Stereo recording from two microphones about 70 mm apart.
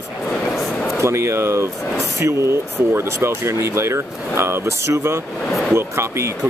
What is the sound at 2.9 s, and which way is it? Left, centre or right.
Speech, right.